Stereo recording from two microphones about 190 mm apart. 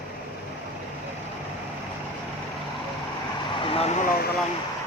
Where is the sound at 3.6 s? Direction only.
30° left (ahead or behind).